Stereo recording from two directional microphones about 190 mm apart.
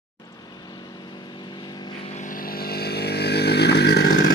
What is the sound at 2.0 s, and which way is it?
Vehicle, 40° left (ahead or behind).